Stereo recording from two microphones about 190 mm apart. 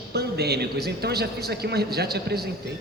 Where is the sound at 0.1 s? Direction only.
60° right (ahead or behind).